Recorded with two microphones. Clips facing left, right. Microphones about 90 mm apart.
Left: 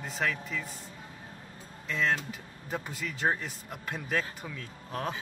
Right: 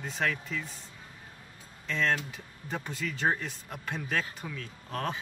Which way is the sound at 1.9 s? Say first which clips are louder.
Even; 5° left (ahead or behind).